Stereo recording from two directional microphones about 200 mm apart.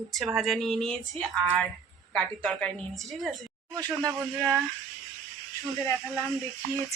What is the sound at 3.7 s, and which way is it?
Speech, 15° right (ahead or behind).